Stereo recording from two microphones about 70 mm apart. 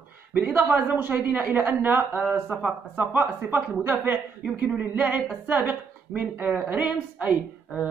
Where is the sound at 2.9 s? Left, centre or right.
Right.